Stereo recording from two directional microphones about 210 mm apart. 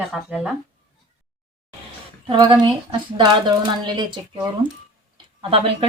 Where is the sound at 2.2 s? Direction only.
20° right (ahead or behind).